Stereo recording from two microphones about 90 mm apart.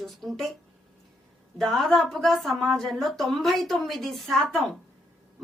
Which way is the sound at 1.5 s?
5° left (ahead or behind).